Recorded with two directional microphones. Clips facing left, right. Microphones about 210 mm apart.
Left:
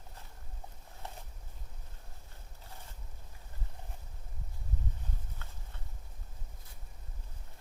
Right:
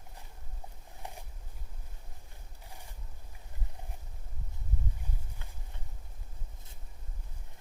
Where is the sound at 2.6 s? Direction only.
15° right (ahead or behind).